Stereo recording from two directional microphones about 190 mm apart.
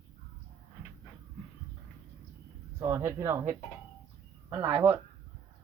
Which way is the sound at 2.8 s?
15° right (ahead or behind).